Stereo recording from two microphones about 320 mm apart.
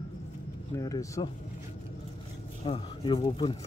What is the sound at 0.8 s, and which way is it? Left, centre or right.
Speech, centre.